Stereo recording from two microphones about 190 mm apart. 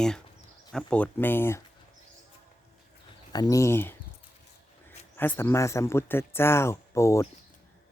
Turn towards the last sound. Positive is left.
turn(degrees=15)  # may be behind; listen again after turning